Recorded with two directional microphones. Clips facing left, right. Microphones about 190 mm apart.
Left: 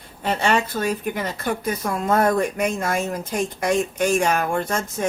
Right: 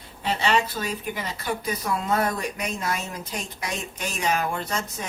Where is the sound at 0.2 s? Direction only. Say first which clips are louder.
Left 3 dB; 50° left (ahead or behind).